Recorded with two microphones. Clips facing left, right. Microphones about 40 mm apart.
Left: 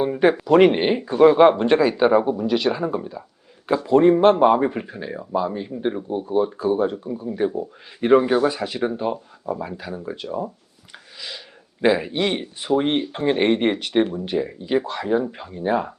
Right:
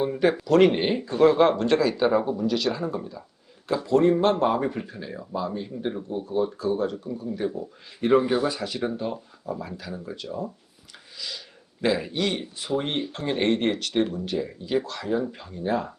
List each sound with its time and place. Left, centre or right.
0.0 s speech: left